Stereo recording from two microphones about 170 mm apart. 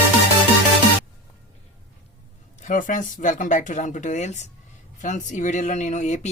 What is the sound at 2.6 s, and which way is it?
Speech, 50° left (ahead or behind).